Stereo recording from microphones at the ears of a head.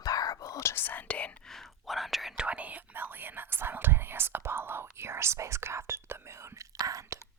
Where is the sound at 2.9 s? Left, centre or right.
Right.